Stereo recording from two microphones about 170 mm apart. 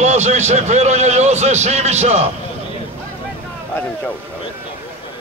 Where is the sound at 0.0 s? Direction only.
40° right (ahead or behind).